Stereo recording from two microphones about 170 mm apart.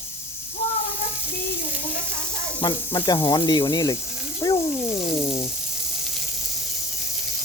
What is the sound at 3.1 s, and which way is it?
Sizzle, 25° left (ahead or behind).